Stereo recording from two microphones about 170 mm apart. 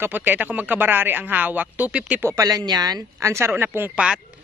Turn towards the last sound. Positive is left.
turn(degrees=-5)  # may be behind; listen again after turning